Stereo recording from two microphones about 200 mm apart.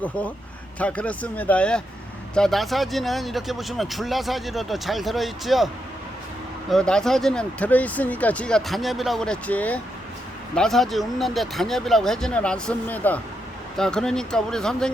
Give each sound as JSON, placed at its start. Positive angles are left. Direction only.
{"t": 0.0, "sound": "a man's voice", "side_deg": 5}
{"t": 6.7, "sound": "speech", "side_deg": 5}